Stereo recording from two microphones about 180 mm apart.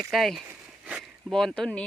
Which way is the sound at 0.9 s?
Centre (ahead or behind).